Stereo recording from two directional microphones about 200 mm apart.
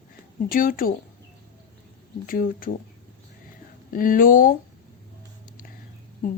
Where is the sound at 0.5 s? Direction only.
45° left (ahead or behind).